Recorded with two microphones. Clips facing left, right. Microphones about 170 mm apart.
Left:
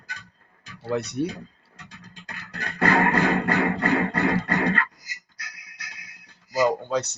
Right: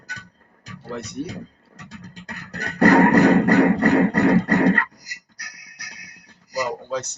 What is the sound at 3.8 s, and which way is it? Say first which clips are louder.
Beatboxing: right 6 dB; 40° right (ahead or behind).